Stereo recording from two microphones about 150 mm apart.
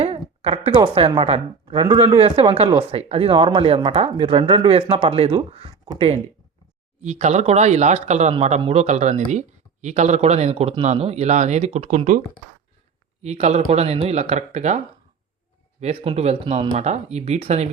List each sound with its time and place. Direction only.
0.0 s a woman's voice: 40° right (ahead or behind)
13.2 s speech: 50° right (ahead or behind)
15.8 s speech: 40° right (ahead or behind)